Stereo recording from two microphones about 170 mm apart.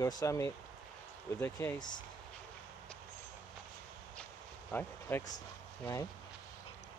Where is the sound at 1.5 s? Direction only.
20° left (ahead or behind).